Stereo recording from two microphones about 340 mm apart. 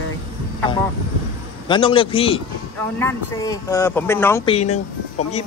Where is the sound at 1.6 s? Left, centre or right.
Centre.